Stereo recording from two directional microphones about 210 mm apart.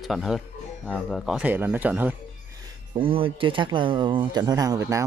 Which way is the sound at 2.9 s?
25° right (ahead or behind).